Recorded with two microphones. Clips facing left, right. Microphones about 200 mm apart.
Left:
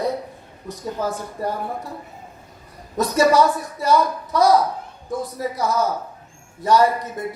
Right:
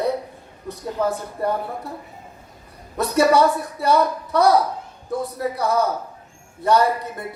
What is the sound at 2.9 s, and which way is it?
Speech, 60° right (ahead or behind).